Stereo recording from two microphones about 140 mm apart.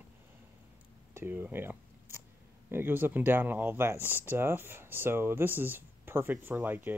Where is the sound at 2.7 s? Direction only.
15° right (ahead or behind).